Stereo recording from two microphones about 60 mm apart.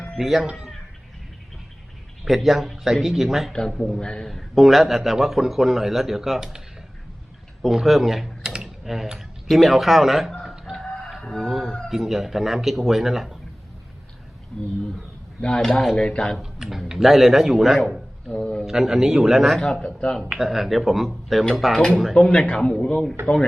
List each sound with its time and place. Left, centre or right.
0.2 s a man's voice: centre
2.2 s a man's voice: centre
4.3 s a man's voice: centre
7.6 s speech: centre
10.4 s chicken: centre
11.9 s a man's voice: centre
14.5 s speech: centre
16.0 s speech: centre
16.4 s a man's voice: centre
18.3 s a man's voice: centre
18.6 s a man's voice: centre
19.6 s speech: centre
20.3 s a man's voice: centre
22.1 s speech: centre